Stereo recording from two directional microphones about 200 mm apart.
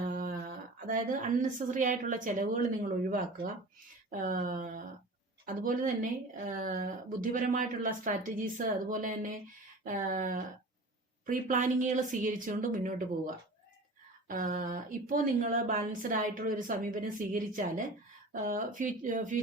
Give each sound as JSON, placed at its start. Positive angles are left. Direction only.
{"t": 0.0, "sound": "speech", "side_deg": -45}
{"t": 4.1, "sound": "speech", "side_deg": -45}